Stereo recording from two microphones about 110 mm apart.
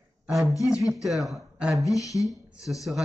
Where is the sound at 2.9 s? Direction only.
10° right (ahead or behind).